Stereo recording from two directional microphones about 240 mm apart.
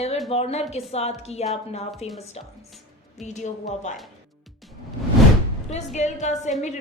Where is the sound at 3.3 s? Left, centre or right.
Left.